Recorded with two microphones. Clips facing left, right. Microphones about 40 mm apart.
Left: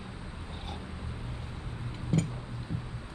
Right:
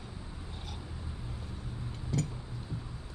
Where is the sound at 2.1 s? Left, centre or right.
Left.